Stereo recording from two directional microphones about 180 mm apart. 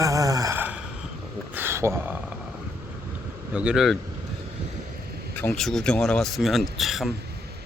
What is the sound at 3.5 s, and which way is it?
Speech, 5° right (ahead or behind).